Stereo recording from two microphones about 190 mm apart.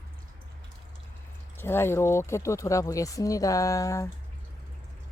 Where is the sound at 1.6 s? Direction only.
10° left (ahead or behind).